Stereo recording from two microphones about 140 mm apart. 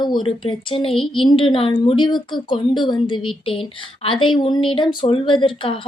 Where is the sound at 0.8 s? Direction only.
Centre (ahead or behind).